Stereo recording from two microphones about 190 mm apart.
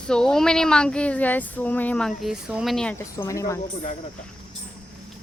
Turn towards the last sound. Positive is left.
turn(degrees=15)  # may be behind; listen again after turning